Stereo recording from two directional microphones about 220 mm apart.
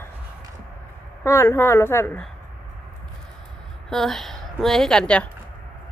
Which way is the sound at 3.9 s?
Centre (ahead or behind).